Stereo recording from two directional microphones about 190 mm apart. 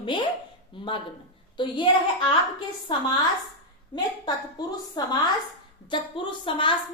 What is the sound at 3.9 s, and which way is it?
A woman's voice, 25° left (ahead or behind).